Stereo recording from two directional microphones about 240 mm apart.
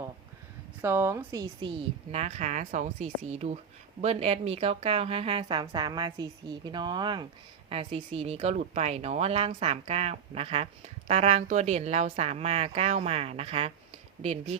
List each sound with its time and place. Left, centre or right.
0.8 s a woman's voice: centre
2.1 s speech: right